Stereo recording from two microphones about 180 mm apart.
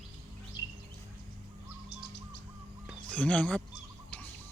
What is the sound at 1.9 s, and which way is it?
Bird, 75° left (ahead or behind).